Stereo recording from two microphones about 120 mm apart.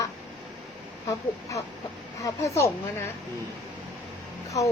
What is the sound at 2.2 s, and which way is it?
Speech, 25° left (ahead or behind).